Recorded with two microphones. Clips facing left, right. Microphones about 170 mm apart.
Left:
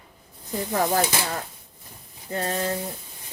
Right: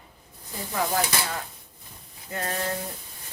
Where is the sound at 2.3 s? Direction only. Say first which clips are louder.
Left 4 dB; 30° left (ahead or behind).